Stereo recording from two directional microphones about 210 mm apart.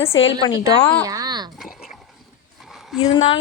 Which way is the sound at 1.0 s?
15° right (ahead or behind).